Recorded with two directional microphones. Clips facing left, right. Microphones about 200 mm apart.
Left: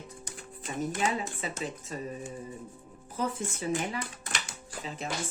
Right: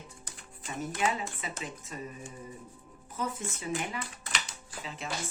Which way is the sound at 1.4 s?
35° left (ahead or behind).